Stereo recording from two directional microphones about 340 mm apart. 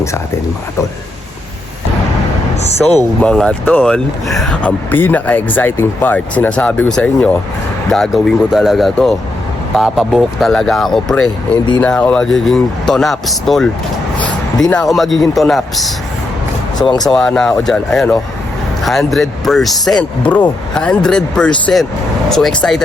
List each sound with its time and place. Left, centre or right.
2.8 s speech: centre
11.6 s speech: centre
14.2 s a sound: centre
15.2 s speech: centre
17.0 s speech: centre